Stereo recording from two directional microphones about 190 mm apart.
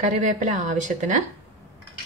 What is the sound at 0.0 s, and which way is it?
A woman's voice, 40° right (ahead or behind).